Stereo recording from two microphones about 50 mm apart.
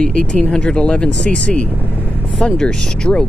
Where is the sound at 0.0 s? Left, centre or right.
Centre.